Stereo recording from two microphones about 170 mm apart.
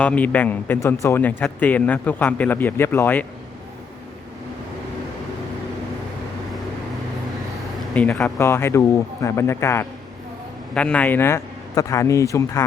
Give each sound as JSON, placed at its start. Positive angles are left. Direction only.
{"t": 0.0, "sound": "speech", "side_deg": 10}
{"t": 7.9, "sound": "speech", "side_deg": 5}
{"t": 8.4, "sound": "speech", "side_deg": 15}